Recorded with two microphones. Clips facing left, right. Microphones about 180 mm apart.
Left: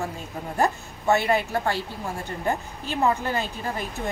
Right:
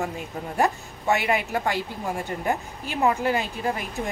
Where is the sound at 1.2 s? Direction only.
15° right (ahead or behind).